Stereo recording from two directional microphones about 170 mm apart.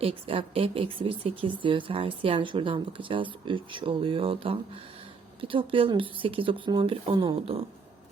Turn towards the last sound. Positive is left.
turn(degrees=-35)  # may be behind; listen again after turning